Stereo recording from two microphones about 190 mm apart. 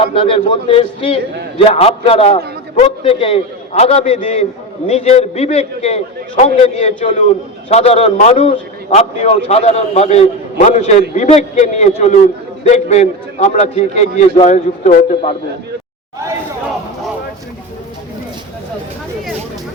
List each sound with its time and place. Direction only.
0.0 s a man's voice: 30° left (ahead or behind)